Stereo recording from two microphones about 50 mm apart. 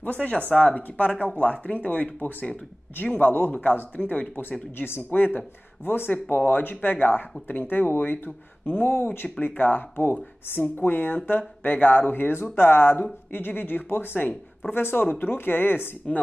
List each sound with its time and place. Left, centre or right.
0.0 s speech: left
12.5 s speech: left